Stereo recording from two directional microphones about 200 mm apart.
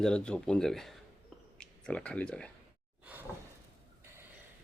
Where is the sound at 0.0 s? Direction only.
5° left (ahead or behind).